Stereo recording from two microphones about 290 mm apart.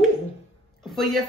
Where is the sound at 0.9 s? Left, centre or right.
Centre.